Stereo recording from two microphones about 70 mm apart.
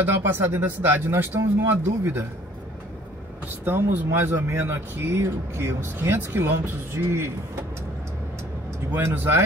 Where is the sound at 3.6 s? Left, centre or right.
Right.